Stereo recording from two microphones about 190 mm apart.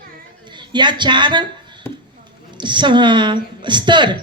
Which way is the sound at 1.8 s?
10° left (ahead or behind).